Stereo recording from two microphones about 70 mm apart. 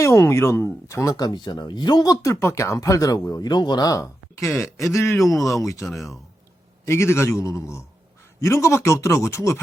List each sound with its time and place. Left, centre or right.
0.0 s speech: left
1.1 s speech: left
2.2 s speech: left
2.8 s speech: left
5.2 s speech: left
5.9 s speech: centre
6.8 s speech: left